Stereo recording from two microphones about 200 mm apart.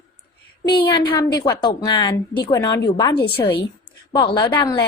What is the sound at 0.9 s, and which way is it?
A woman's voice, 20° left (ahead or behind).